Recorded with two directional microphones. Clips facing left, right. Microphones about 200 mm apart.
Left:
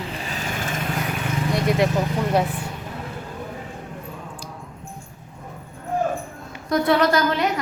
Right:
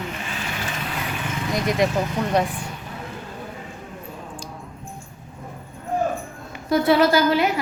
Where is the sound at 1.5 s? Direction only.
Centre (ahead or behind).